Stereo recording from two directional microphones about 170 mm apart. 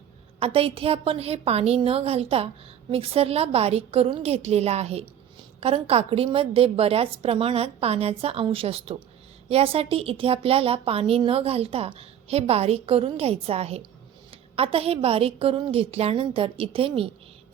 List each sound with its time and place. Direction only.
0.3 s a woman's voice: 35° right (ahead or behind)